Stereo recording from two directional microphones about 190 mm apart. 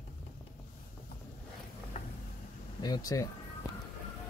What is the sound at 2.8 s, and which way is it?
Speech, 20° left (ahead or behind).